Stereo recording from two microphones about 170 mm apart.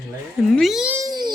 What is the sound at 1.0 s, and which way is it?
Baby cry, 25° right (ahead or behind).